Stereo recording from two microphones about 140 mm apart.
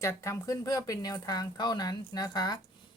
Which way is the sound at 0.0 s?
20° left (ahead or behind).